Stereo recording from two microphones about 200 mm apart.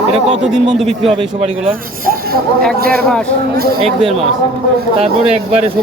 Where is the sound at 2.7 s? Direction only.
50° right (ahead or behind).